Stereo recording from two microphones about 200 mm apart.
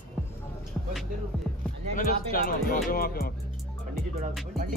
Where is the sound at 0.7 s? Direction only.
5° left (ahead or behind).